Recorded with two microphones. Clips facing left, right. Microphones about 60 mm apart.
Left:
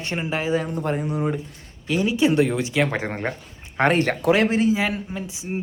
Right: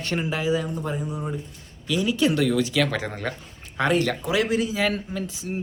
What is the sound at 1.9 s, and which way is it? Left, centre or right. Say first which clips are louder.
A man's voice: left 2 dB; left.